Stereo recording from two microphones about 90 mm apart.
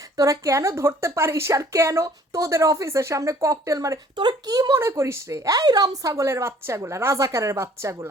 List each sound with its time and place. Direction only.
0.2 s speech: 35° right (ahead or behind)
4.1 s speech: 55° right (ahead or behind)
4.8 s speech: 30° right (ahead or behind)